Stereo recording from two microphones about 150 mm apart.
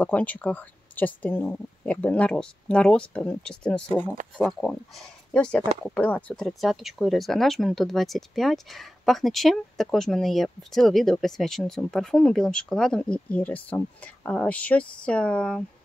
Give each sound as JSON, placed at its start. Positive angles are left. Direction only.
{"t": 0.0, "sound": "speech", "side_deg": 10}